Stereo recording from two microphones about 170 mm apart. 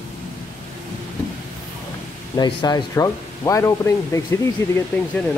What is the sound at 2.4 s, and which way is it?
Speech, 25° left (ahead or behind).